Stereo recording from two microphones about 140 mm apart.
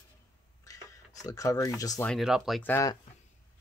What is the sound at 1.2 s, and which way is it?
Speech, 25° left (ahead or behind).